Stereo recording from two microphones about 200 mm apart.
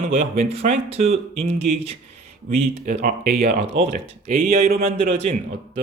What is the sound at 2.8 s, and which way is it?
Speech, 45° right (ahead or behind).